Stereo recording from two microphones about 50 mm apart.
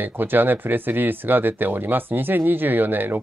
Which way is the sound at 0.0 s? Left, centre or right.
Right.